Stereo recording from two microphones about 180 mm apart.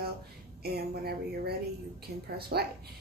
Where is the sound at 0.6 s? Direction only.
60° right (ahead or behind).